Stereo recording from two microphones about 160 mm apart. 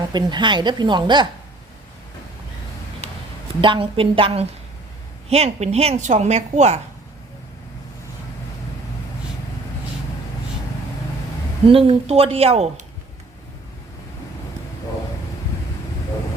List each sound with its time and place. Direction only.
0.1 s a woman's voice: 25° right (ahead or behind)
3.6 s a woman's voice: 30° right (ahead or behind)
11.6 s speech: 35° right (ahead or behind)